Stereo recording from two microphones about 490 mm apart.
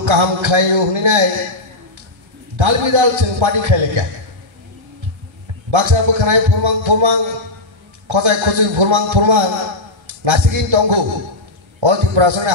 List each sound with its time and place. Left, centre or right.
0.0 s a man's voice: right
2.5 s a man's voice: right
5.7 s a man's voice: right